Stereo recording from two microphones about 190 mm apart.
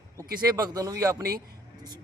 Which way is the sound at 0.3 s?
20° right (ahead or behind).